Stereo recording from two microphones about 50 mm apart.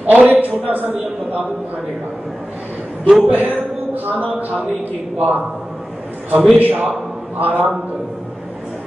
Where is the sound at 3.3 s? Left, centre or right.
Right.